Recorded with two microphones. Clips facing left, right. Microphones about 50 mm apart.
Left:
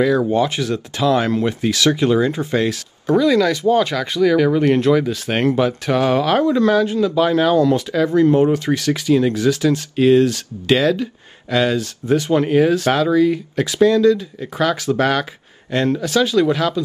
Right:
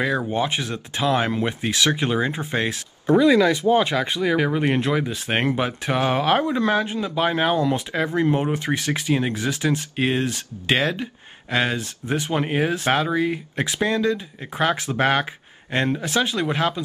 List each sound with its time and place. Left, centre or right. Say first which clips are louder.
0.3 s speech: left 6 dB; right